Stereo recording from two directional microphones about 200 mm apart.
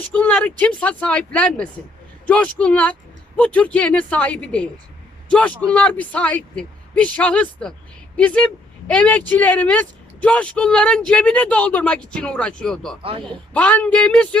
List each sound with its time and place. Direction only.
0.0 s speech: 5° left (ahead or behind)
13.0 s speech: 25° right (ahead or behind)
13.5 s speech: 5° left (ahead or behind)